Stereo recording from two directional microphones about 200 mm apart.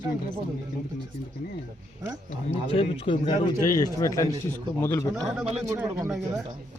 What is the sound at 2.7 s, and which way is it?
A man's voice, 25° left (ahead or behind).